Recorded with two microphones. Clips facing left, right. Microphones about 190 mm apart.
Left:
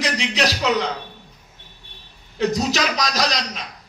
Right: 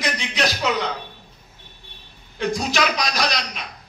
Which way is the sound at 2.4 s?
40° left (ahead or behind).